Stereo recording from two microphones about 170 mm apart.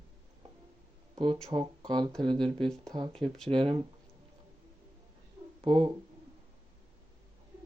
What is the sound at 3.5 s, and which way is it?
Speech, 30° right (ahead or behind).